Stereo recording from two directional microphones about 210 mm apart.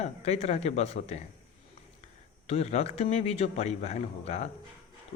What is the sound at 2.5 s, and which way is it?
Speech, 30° left (ahead or behind).